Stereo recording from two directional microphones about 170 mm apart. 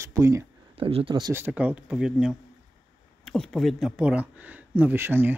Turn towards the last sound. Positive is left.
turn(degrees=-15)  # may be behind; listen again after turning